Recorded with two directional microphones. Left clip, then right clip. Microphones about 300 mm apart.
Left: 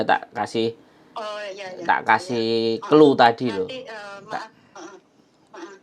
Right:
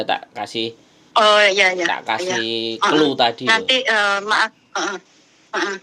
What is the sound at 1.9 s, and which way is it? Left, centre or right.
Speech, left.